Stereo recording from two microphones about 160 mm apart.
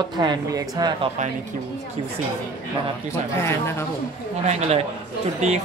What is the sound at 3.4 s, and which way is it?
Speech, 15° left (ahead or behind).